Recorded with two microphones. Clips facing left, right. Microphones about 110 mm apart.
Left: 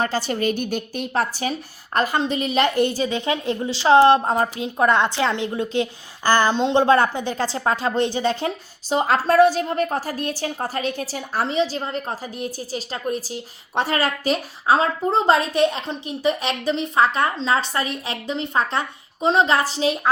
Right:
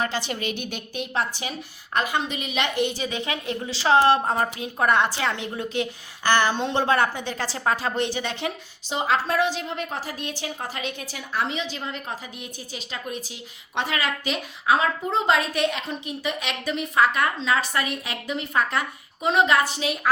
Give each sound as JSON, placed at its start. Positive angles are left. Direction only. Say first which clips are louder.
{"t": 0.0, "sound": "a woman's voice", "louder": "left 5 dB", "side_deg": 40}
{"t": 6.5, "sound": "a woman's voice", "louder": "left 6 dB", "side_deg": 20}